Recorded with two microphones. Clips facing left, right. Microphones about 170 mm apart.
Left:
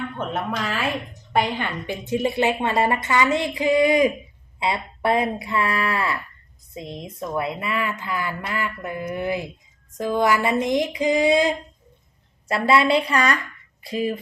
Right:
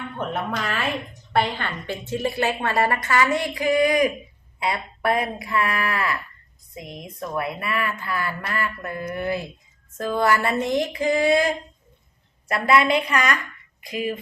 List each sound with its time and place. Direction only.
0.5 s a woman's voice: 5° left (ahead or behind); by 14.2 s 30° left (ahead or behind)